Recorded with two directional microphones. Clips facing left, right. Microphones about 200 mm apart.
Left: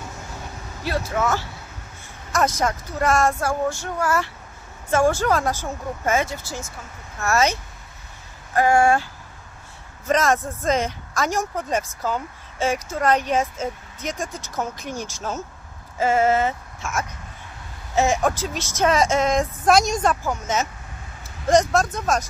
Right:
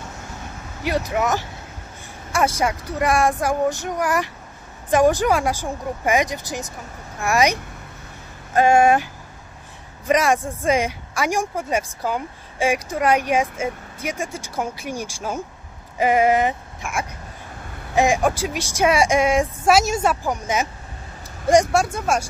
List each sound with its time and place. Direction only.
0.8 s speech: 15° right (ahead or behind)
8.5 s speech: 20° right (ahead or behind)